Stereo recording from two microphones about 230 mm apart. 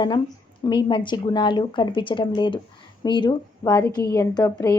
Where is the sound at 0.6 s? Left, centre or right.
Centre.